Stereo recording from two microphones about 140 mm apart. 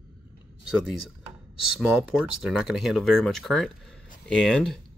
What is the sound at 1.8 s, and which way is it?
Speech, 5° right (ahead or behind).